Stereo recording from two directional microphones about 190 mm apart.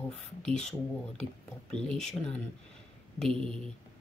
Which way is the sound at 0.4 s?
5° left (ahead or behind).